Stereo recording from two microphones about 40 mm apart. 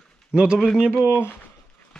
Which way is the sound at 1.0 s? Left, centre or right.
Left.